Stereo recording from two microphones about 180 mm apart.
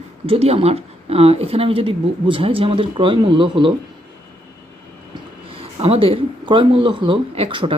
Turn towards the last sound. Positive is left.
turn(degrees=-30)  # may be behind; listen again after turning